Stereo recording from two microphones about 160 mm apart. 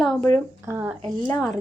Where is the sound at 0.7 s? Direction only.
15° right (ahead or behind).